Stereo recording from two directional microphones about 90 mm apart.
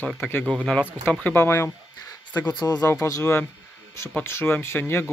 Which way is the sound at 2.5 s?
50° left (ahead or behind).